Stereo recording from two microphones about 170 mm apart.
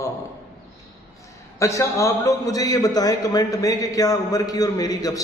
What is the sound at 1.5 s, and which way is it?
A man's voice, 20° left (ahead or behind).